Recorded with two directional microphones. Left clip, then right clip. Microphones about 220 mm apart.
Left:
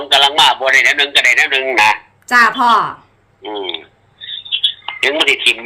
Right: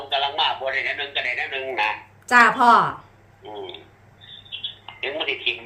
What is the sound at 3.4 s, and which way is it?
Speech, 55° left (ahead or behind).